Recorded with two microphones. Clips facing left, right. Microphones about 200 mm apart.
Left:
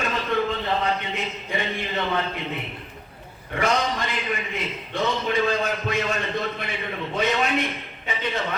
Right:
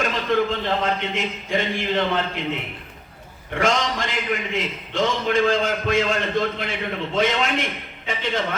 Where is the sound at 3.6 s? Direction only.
90° right.